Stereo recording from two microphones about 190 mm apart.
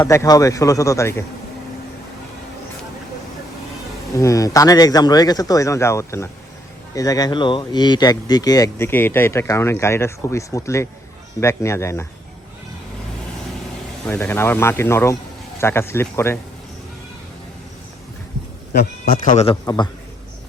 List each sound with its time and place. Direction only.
0.0 s speech: 15° left (ahead or behind)
4.1 s speech: 15° left (ahead or behind)
14.1 s speech: 15° left (ahead or behind)
18.7 s a man's voice: 50° left (ahead or behind)
19.6 s a man's voice: 20° left (ahead or behind)